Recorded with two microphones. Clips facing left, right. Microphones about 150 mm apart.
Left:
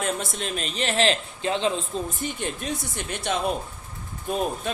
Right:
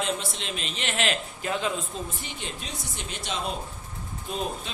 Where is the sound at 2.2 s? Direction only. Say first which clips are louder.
Left 7 dB; 50° left (ahead or behind).